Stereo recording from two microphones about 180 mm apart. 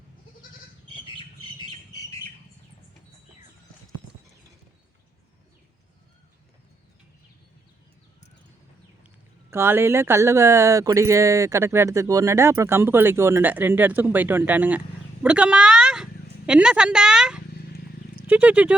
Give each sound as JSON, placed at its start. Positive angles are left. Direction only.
{"t": 1.6, "sound": "squawk", "side_deg": 20}
{"t": 9.5, "sound": "speech", "side_deg": -15}
{"t": 15.2, "sound": "a sound", "side_deg": -5}
{"t": 16.5, "sound": "a woman's voice", "side_deg": -5}